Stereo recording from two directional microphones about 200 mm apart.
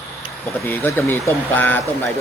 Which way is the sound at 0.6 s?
10° left (ahead or behind).